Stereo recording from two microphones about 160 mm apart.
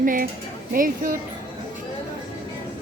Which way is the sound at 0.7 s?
60° right (ahead or behind).